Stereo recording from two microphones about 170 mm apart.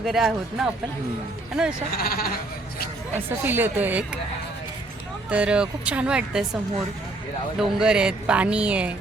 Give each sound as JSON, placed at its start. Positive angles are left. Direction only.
{"t": 0.0, "sound": "speech", "side_deg": 0}
{"t": 2.0, "sound": "speech", "side_deg": 60}
{"t": 3.2, "sound": "speech", "side_deg": -10}
{"t": 5.3, "sound": "speech", "side_deg": -5}
{"t": 7.6, "sound": "speech", "side_deg": -5}